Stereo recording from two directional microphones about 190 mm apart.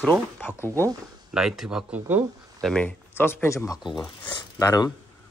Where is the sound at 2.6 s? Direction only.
5° left (ahead or behind).